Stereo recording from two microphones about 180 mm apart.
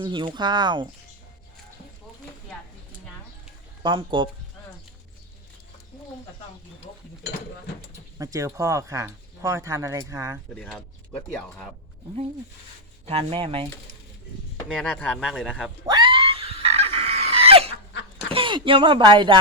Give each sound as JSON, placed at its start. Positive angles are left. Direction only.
{"t": 0.0, "sound": "speech", "side_deg": -25}
{"t": 3.8, "sound": "speech", "side_deg": -25}
{"t": 8.2, "sound": "speech", "side_deg": -15}
{"t": 10.5, "sound": "speech", "side_deg": 5}
{"t": 13.1, "sound": "speech", "side_deg": -30}
{"t": 14.8, "sound": "speech", "side_deg": 5}
{"t": 15.9, "sound": "screaming", "side_deg": -25}
{"t": 18.3, "sound": "speech", "side_deg": -30}